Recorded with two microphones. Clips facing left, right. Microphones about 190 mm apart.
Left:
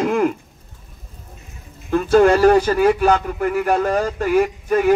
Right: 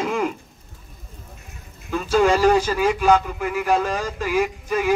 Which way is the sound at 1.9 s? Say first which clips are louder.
Left 5 dB; 60° left (ahead or behind).